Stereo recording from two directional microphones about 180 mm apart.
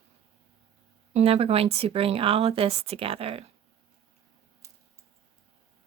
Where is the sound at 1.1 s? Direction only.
35° right (ahead or behind).